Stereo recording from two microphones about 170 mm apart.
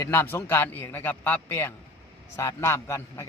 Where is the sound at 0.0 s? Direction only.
15° left (ahead or behind).